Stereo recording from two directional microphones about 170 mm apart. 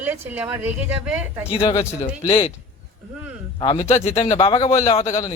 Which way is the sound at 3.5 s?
35° left (ahead or behind).